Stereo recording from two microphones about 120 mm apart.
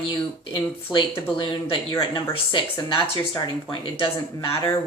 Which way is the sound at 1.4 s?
40° left (ahead or behind).